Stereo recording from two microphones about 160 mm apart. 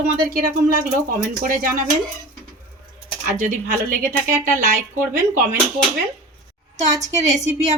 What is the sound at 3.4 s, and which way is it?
Speech, 55° right (ahead or behind).